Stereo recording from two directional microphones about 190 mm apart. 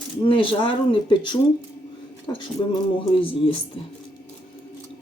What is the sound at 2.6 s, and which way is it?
Speech, 20° left (ahead or behind).